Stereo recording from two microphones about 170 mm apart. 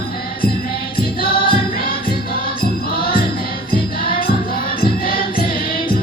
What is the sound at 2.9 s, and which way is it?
Music, 60° left (ahead or behind).